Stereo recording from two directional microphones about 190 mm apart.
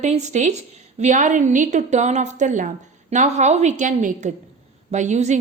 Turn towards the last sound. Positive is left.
turn(degrees=-40)  # may be behind; listen again after turning